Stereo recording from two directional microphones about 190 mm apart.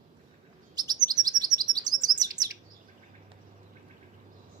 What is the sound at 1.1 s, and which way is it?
Chirp, 20° right (ahead or behind).